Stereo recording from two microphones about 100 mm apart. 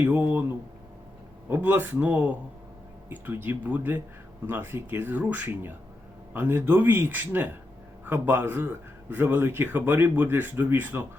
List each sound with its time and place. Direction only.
0.0 s a man's voice: 15° right (ahead or behind)
1.5 s a man's voice: 20° right (ahead or behind)